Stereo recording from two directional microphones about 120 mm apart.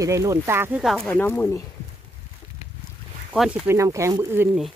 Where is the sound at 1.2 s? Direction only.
20° left (ahead or behind).